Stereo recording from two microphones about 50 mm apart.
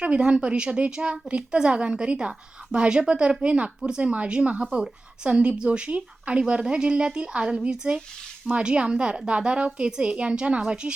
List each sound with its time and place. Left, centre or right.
0.0 s a woman's voice: right